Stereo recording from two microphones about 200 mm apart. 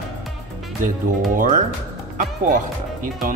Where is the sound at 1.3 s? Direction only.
40° right (ahead or behind).